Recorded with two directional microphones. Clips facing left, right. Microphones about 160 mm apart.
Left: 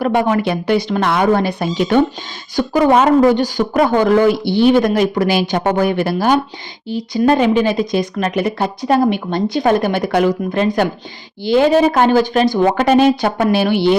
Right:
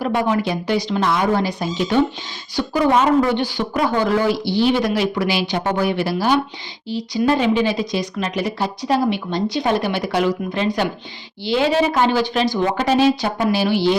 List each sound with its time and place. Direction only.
0.0 s speech: 60° left (ahead or behind)